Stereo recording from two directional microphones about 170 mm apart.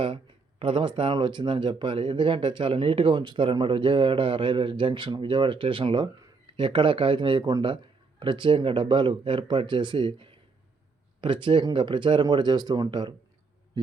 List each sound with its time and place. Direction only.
0.6 s speech: 30° right (ahead or behind)